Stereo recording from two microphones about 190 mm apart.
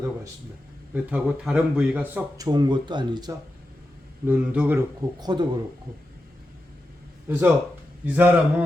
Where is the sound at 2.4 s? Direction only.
20° right (ahead or behind).